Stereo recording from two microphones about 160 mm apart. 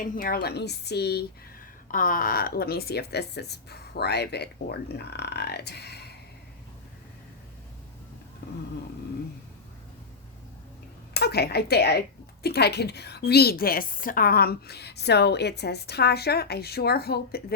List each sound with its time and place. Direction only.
0.0 s speech: 65° left (ahead or behind); by 1.2 s 90° left
1.9 s speech: 60° left (ahead or behind); by 6.1 s 90° left
8.4 s a sound: 90° left
11.1 s speech: 90° left